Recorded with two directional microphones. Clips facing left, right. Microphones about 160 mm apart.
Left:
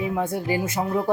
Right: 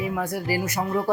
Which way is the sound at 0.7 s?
Centre (ahead or behind).